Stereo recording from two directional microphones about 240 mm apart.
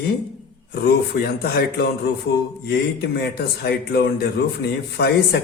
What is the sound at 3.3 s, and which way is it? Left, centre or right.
A man's voice, left.